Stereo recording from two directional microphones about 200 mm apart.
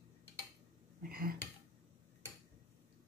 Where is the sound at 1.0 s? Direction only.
45° right (ahead or behind).